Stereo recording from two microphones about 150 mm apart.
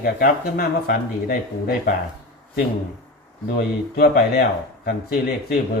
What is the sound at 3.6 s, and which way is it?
Speech, 90° left.